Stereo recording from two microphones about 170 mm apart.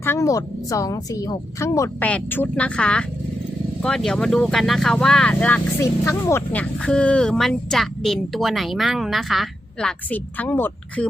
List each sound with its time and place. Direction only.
0.0 s speech: 15° left (ahead or behind)